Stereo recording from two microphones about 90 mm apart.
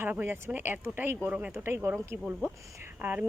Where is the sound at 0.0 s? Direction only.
20° right (ahead or behind).